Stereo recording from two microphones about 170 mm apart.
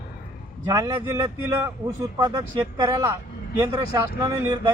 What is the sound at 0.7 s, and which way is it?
A man's voice, 20° right (ahead or behind).